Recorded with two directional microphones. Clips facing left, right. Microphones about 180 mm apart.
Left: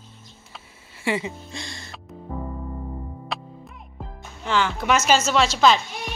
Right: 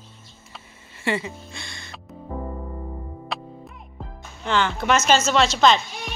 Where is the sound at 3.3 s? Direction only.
Centre (ahead or behind).